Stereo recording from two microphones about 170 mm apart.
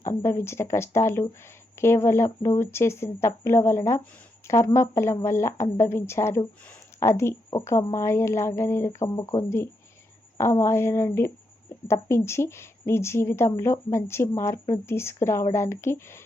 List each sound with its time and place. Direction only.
0.0 s speech: 15° left (ahead or behind)